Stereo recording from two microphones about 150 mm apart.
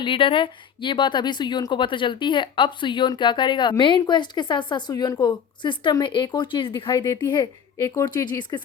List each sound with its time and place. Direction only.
0.0 s speech: 35° left (ahead or behind)